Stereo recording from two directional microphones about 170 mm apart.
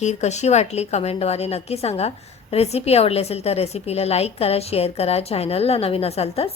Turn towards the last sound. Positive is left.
turn(degrees=35)  # may be behind; listen again after turning